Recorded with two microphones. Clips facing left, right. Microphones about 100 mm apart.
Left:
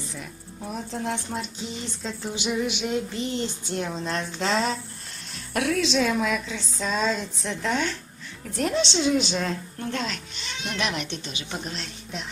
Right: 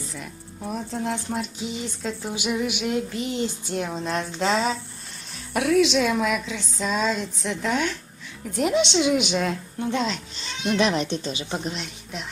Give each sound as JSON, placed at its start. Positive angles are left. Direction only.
{"t": 0.1, "sound": "a woman's voice", "side_deg": -5}
{"t": 11.6, "sound": "a woman's voice", "side_deg": -15}